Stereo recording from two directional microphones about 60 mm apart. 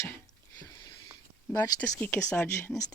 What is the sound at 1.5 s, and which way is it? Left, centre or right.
Speech, left.